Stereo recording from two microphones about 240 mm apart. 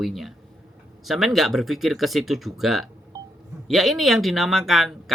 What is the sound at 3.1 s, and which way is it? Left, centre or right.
Telephone dialing, centre.